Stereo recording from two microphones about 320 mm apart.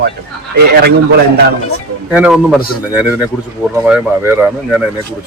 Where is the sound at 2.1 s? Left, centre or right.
Centre.